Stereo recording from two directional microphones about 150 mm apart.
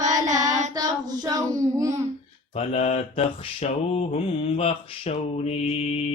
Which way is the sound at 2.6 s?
45° left (ahead or behind).